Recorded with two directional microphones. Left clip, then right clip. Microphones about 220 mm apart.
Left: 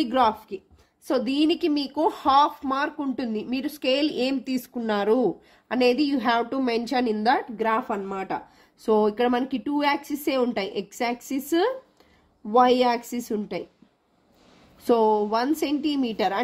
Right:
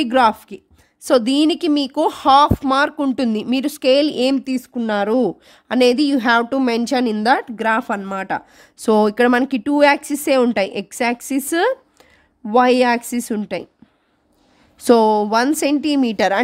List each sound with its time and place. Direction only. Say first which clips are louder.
0.0 s speech: right 7 dB; 40° right (ahead or behind)
14.9 s a woman's voice: right 7 dB; 45° right (ahead or behind)